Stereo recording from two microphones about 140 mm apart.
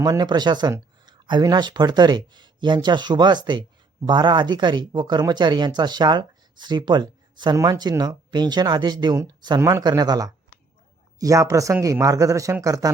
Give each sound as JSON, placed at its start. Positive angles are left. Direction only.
{"t": 0.0, "sound": "speech", "side_deg": -30}
{"t": 9.6, "sound": "a man's voice", "side_deg": -20}
{"t": 9.8, "sound": "a man's voice", "side_deg": -30}